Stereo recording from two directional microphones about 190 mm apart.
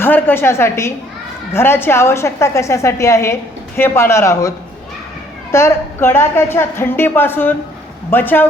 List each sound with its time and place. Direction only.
0.0 s a woman's voice: 10° left (ahead or behind)